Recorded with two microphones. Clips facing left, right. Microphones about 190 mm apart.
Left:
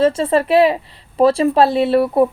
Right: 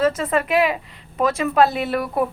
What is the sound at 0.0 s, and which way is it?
A woman's voice, 30° left (ahead or behind).